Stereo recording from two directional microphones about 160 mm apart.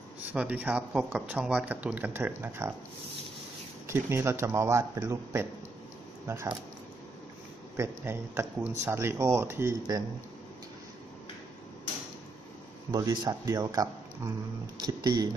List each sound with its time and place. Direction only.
0.3 s speech: 10° right (ahead or behind)
3.8 s speech: 15° right (ahead or behind)
7.7 s speech: 15° right (ahead or behind)
12.9 s speech: 25° right (ahead or behind)